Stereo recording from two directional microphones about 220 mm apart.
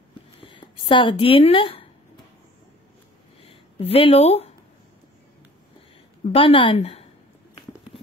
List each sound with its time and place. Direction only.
0.4 s speech: 25° left (ahead or behind)
3.8 s speech: 25° left (ahead or behind)
6.3 s speech: 25° left (ahead or behind)
7.5 s a sound: 25° left (ahead or behind)